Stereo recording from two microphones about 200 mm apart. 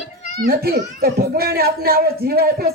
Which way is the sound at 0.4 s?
50° right (ahead or behind).